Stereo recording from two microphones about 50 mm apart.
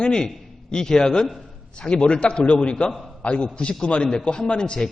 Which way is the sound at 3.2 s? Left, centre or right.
Left.